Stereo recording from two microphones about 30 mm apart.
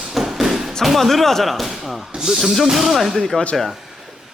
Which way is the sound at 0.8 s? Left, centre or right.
Centre.